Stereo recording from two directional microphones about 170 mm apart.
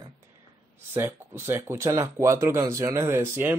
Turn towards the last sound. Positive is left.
turn(degrees=-15)  # may be behind; listen again after turning